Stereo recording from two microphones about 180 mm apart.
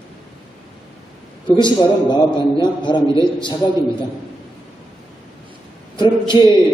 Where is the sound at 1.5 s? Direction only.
25° left (ahead or behind).